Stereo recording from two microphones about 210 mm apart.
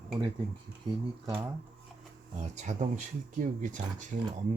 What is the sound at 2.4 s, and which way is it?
Speech, 35° right (ahead or behind).